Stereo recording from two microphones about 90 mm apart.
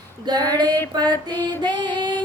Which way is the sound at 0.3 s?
50° right (ahead or behind).